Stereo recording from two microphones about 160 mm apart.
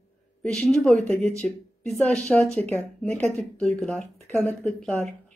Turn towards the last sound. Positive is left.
turn(degrees=5)  # may be behind; listen again after turning